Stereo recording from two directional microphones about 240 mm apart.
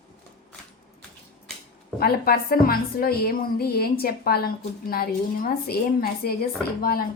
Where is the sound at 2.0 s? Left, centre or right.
Left.